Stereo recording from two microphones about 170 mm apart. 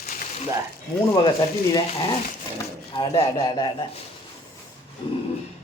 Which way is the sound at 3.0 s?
25° left (ahead or behind).